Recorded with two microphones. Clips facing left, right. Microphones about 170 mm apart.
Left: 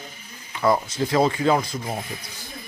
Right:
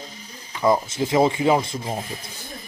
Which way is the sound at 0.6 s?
20° right (ahead or behind).